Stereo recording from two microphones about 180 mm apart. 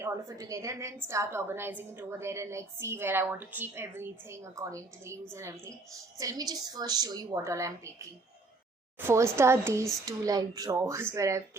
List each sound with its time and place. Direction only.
0.0 s a woman's voice: 20° right (ahead or behind)